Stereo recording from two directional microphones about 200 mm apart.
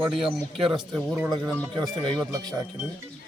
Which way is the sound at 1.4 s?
5° left (ahead or behind).